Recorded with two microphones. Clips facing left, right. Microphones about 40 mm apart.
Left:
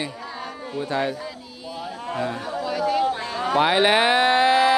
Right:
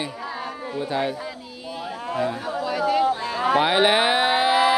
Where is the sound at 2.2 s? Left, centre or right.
Centre.